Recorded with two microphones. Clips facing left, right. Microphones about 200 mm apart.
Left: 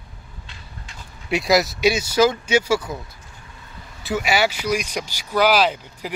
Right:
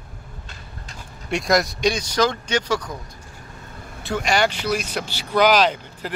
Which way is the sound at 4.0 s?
5° left (ahead or behind).